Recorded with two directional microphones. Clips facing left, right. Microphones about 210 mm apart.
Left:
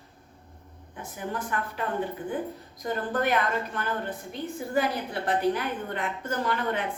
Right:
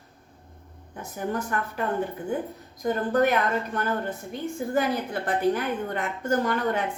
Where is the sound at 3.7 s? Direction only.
45° right (ahead or behind).